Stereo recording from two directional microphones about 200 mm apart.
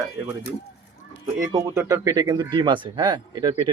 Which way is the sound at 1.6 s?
15° right (ahead or behind).